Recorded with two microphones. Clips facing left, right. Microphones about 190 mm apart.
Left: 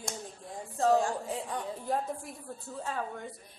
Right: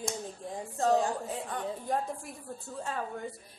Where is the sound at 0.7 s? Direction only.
Centre (ahead or behind).